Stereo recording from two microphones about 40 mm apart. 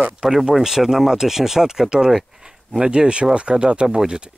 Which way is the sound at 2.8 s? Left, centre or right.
Right.